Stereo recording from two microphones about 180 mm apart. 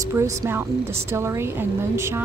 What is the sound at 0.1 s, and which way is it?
A woman's voice, 15° right (ahead or behind).